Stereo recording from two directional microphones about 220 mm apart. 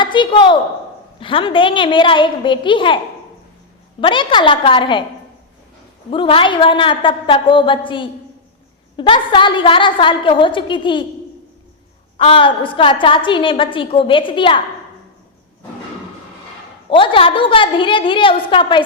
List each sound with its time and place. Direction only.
0.0 s a woman's voice: 20° left (ahead or behind)
4.0 s a woman's voice: 20° left (ahead or behind)
6.1 s a woman's voice: 25° left (ahead or behind)
12.1 s a woman's voice: 25° left (ahead or behind)
16.9 s a woman's voice: 25° left (ahead or behind)